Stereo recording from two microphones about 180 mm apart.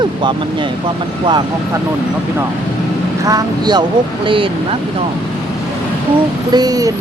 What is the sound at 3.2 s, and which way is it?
Speech, 20° right (ahead or behind).